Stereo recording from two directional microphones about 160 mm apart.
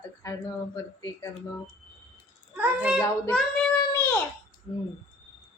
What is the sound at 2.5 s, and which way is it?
Speech, 5° right (ahead or behind).